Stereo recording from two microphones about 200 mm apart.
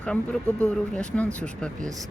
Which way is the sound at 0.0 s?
5° left (ahead or behind).